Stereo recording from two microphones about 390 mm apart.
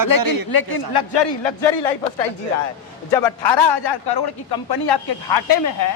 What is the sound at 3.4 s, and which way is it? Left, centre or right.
Speech, left.